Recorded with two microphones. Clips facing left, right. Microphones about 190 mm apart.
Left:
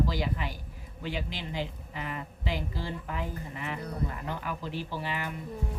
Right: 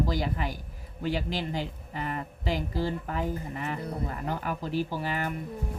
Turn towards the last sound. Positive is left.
turn(degrees=-45)  # may be behind; listen again after turning